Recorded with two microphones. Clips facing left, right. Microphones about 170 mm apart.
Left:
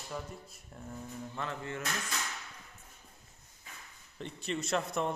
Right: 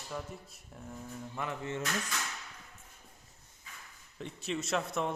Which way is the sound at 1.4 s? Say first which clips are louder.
Right 2 dB; 20° right (ahead or behind).